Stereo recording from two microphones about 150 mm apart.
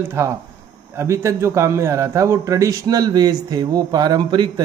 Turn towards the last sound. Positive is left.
turn(degrees=-30)  # may be behind; listen again after turning